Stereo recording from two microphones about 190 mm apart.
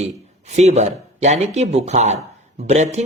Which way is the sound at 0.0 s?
35° right (ahead or behind).